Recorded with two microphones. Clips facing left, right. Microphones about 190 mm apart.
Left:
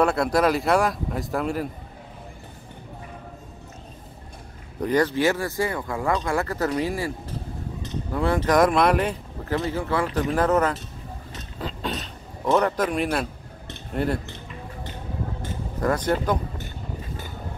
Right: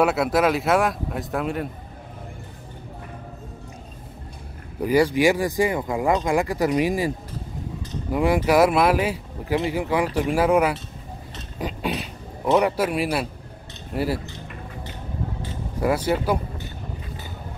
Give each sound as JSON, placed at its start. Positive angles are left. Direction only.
{"t": 0.0, "sound": "speech", "side_deg": -5}
{"t": 4.8, "sound": "speech", "side_deg": -10}
{"t": 8.1, "sound": "speech", "side_deg": -15}
{"t": 11.5, "sound": "a sound", "side_deg": -15}
{"t": 13.9, "sound": "speech", "side_deg": -5}
{"t": 15.8, "sound": "speech", "side_deg": -10}